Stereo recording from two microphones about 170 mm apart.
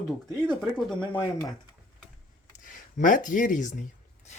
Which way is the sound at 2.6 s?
50° left (ahead or behind).